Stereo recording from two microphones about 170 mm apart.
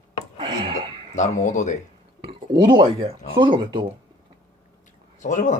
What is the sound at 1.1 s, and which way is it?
Speech, 45° left (ahead or behind).